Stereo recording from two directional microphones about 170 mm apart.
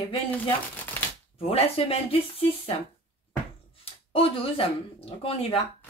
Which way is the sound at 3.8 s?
35° left (ahead or behind).